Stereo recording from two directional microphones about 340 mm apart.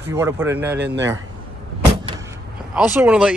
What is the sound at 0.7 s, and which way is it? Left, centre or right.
Speech, right.